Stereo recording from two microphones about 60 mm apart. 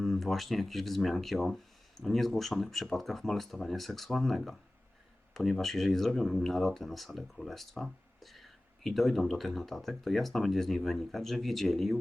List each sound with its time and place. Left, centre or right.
0.0 s speech: centre